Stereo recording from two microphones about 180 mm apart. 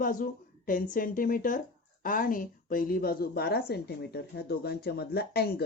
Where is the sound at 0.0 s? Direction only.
50° left (ahead or behind).